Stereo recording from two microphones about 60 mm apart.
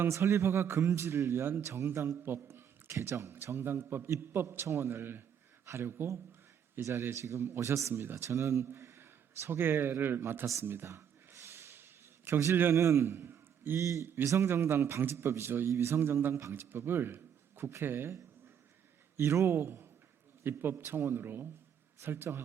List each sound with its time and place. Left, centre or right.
0.0 s a man's voice: right
2.2 s a sound: right
2.9 s a man's voice: right
4.6 s a man's voice: right
7.1 s a man's voice: right
10.8 s gasp: right
12.7 s a man's voice: right
13.7 s a man's voice: right
16.3 s a man's voice: right
16.6 s a man's voice: right
19.1 s a man's voice: right